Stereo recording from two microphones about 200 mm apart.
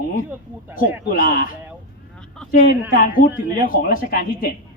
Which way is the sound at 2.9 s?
45° left (ahead or behind).